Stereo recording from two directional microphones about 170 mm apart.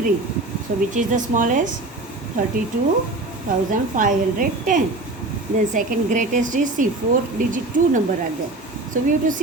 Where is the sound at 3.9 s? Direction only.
50° right (ahead or behind).